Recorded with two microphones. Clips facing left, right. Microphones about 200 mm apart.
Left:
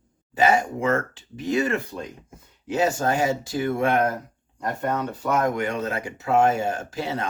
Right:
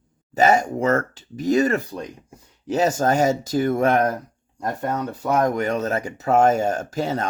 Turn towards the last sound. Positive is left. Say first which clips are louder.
# right 4 dB
turn(degrees=-45)  # may be behind; listen again after turning